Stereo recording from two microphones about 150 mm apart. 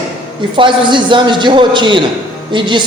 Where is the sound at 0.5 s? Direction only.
30° right (ahead or behind).